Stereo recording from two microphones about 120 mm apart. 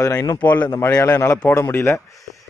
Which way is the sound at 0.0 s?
25° left (ahead or behind).